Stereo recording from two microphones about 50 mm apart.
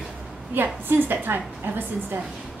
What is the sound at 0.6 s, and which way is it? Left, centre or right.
Speech, right.